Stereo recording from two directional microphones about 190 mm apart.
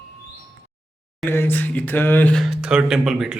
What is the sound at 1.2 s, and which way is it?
Speech, 10° left (ahead or behind).